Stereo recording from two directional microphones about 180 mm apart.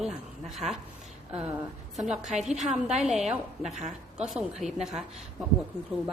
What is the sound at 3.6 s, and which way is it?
Speech, 40° right (ahead or behind).